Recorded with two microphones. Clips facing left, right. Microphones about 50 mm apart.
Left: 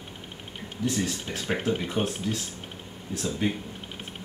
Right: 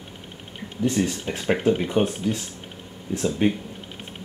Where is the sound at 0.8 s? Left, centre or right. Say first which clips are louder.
Right 5 dB; right.